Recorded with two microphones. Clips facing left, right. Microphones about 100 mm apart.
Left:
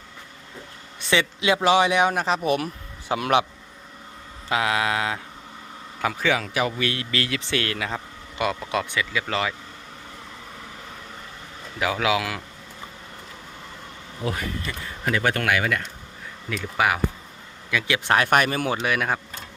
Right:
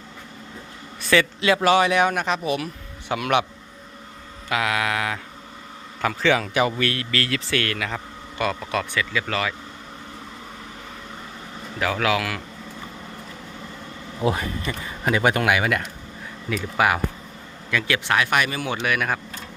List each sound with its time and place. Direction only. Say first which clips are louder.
1.1 s a man's voice: right 2 dB; 15° left (ahead or behind); by 2.4 s 30° left (ahead or behind)
2.4 s speech: left 2 dB; 50° left (ahead or behind)
3.1 s a man's voice: left 1 dB; 30° left (ahead or behind)
4.4 s a man's voice: left 1 dB; 25° left (ahead or behind)
6.0 s a man's voice: right 3 dB; 10° left (ahead or behind)
6.7 s speech: right 2 dB; 20° left (ahead or behind)
11.8 s speech: even; 10° left (ahead or behind)
14.3 s a man's voice: right 5 dB; 20° right (ahead or behind); by 17.9 s 10° left (ahead or behind)
18.1 s speech: left 3 dB; 40° left (ahead or behind); by 19.2 s 25° left (ahead or behind)